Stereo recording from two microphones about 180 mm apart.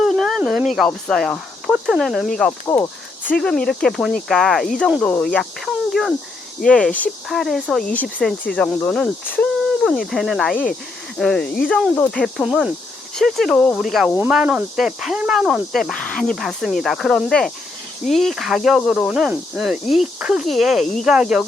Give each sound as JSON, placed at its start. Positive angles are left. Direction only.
{"t": 0.0, "sound": "a sound", "side_deg": 0}
{"t": 0.9, "sound": "speech", "side_deg": 0}
{"t": 2.5, "sound": "speech", "side_deg": 15}
{"t": 3.3, "sound": "speech", "side_deg": 5}
{"t": 14.2, "sound": "speech", "side_deg": -10}